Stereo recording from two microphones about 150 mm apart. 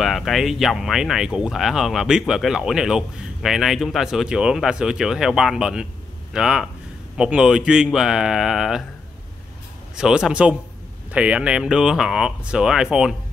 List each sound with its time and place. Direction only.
0.0 s speech: centre (ahead or behind)
9.9 s speech: 5° right (ahead or behind)